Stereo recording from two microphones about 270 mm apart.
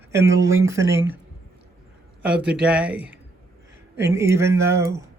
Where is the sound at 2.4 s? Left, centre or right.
Centre.